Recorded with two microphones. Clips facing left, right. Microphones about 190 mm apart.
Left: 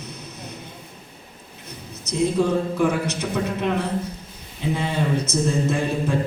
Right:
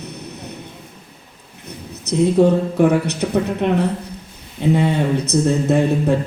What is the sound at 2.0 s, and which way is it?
A man's voice, 65° right (ahead or behind).